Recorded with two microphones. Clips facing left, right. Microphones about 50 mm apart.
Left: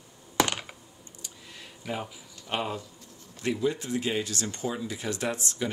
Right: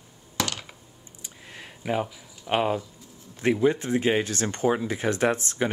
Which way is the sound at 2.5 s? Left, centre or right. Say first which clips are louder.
Right 7 dB; right.